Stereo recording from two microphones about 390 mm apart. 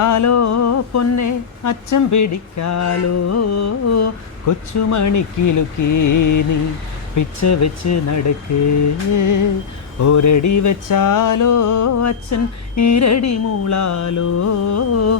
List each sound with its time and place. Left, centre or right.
0.0 s speech: left